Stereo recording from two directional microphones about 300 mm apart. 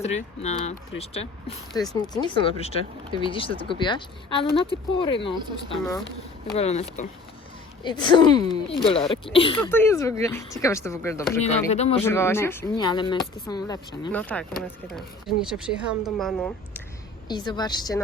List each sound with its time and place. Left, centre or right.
0.0 s speech: left
6.6 s speech: left
11.7 s speech: left
11.9 s speech: centre
17.2 s speech: centre